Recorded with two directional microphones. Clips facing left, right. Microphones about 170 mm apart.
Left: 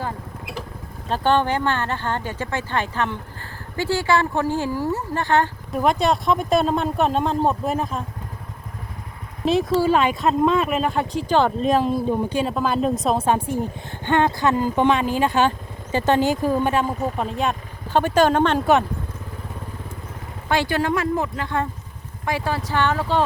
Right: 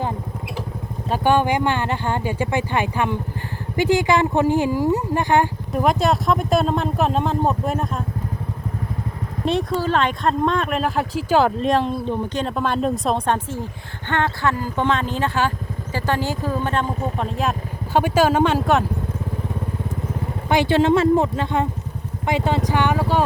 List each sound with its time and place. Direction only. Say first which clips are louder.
1.1 s speech: right 2 dB; 10° right (ahead or behind)
5.7 s speech: right 1 dB; centre (ahead or behind)
9.4 s speech: left 3 dB; centre (ahead or behind)
20.5 s speech: right 5 dB; 20° right (ahead or behind)